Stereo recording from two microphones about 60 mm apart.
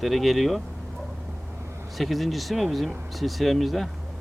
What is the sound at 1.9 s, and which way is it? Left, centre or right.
Speech, centre.